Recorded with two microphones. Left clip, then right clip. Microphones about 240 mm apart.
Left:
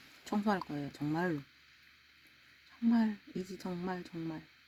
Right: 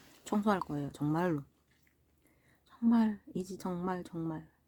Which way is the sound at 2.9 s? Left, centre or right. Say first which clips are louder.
Right 2 dB; centre.